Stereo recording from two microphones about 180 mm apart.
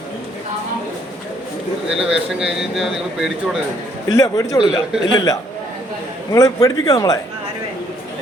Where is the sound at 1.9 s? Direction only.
5° right (ahead or behind).